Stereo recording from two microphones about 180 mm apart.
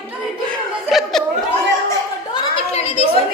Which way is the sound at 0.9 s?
Centre (ahead or behind).